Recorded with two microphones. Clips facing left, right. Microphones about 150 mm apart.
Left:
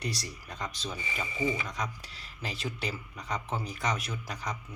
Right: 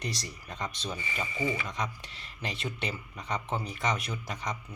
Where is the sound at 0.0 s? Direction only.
Centre (ahead or behind).